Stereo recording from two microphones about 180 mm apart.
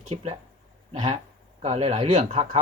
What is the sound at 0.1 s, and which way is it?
Speech, 35° right (ahead or behind).